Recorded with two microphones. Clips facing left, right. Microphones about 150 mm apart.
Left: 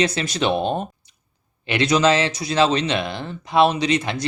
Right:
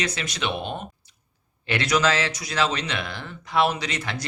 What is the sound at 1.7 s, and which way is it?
Speech, 25° left (ahead or behind).